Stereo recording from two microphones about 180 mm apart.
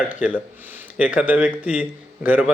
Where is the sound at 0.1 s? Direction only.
10° right (ahead or behind).